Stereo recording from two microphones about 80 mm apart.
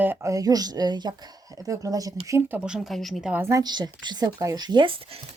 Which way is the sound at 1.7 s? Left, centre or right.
Right.